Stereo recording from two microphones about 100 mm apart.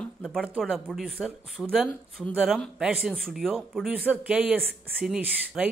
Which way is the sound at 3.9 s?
10° right (ahead or behind).